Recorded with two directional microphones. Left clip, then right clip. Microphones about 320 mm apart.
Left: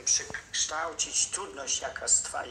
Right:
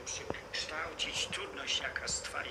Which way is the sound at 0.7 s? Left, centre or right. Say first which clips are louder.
Left 5 dB; centre.